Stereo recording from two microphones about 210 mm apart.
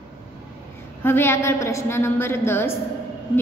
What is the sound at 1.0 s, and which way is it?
A woman's voice, 10° left (ahead or behind).